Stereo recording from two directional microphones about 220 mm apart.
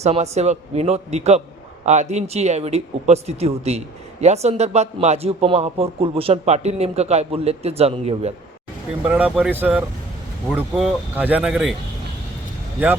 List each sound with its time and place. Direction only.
0.0 s speech: 30° right (ahead or behind)
9.0 s speech: 5° right (ahead or behind)